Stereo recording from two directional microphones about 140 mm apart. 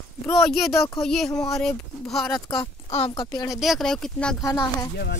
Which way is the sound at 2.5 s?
35° left (ahead or behind).